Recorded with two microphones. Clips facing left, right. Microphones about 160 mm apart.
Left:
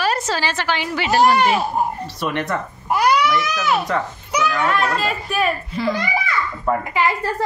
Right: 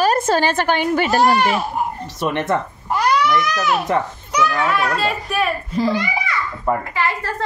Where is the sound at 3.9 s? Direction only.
20° right (ahead or behind).